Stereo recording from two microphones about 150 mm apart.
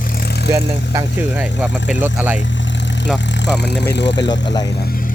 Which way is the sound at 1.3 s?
5° right (ahead or behind).